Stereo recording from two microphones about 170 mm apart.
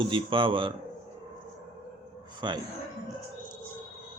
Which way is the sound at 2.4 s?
25° right (ahead or behind).